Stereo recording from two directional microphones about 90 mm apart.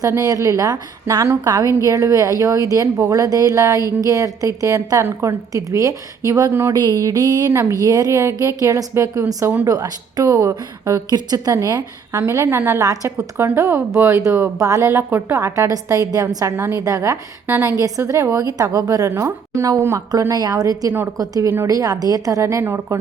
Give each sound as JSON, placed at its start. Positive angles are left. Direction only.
{"t": 0.2, "sound": "a woman's voice", "side_deg": -40}
{"t": 6.5, "sound": "speech", "side_deg": -30}
{"t": 6.7, "sound": "a sound", "side_deg": -45}
{"t": 7.5, "sound": "a woman's voice", "side_deg": -35}
{"t": 11.5, "sound": "a sound", "side_deg": -45}
{"t": 12.1, "sound": "speech", "side_deg": -30}
{"t": 12.8, "sound": "a woman's voice", "side_deg": -40}
{"t": 13.3, "sound": "a woman's voice", "side_deg": -25}
{"t": 16.8, "sound": "a woman's voice", "side_deg": -35}
{"t": 17.4, "sound": "a woman's voice", "side_deg": -20}
{"t": 17.8, "sound": "a woman's voice", "side_deg": -40}
{"t": 20.3, "sound": "a sound", "side_deg": -45}
{"t": 21.7, "sound": "a woman's voice", "side_deg": -40}